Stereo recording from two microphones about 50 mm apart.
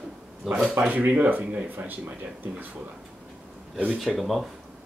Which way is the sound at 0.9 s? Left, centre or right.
Right.